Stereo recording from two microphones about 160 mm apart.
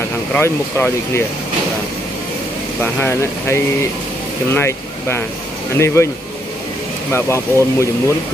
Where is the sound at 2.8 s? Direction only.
15° left (ahead or behind).